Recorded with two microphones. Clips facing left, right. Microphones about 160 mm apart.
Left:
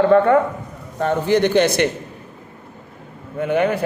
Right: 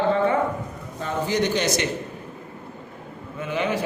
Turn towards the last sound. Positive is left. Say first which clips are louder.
# left 7 dB
turn(degrees=60)  # may be behind; listen again after turning